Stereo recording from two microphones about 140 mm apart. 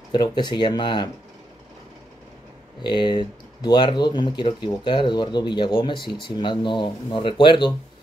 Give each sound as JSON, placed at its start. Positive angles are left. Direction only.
{"t": 0.1, "sound": "speech", "side_deg": 30}
{"t": 2.8, "sound": "speech", "side_deg": 35}